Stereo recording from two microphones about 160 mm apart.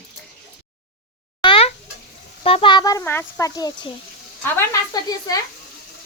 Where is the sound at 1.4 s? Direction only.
35° left (ahead or behind).